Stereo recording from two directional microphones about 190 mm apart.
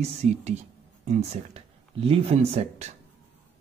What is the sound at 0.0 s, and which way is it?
A woman's voice, 35° right (ahead or behind).